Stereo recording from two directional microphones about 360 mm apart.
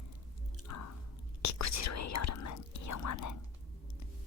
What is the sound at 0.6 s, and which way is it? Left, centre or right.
Chewing, left.